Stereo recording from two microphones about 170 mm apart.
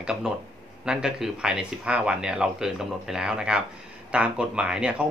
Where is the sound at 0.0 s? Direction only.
5° right (ahead or behind).